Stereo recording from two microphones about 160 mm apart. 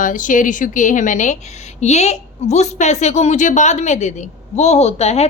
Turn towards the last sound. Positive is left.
turn(degrees=40)  # may be behind; listen again after turning